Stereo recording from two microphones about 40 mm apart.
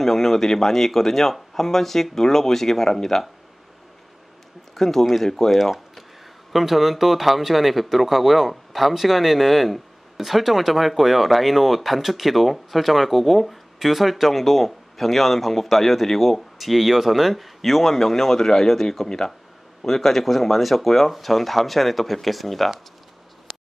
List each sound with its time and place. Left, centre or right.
0.0 s speech: centre
4.7 s speech: centre